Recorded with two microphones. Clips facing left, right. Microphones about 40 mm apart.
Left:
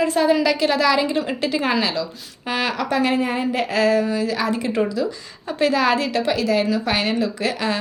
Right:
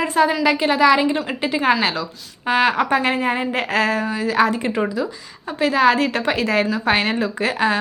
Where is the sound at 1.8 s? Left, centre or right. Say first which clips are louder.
Right 1 dB; right.